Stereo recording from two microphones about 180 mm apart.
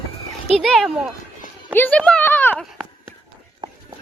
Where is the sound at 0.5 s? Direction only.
Centre (ahead or behind).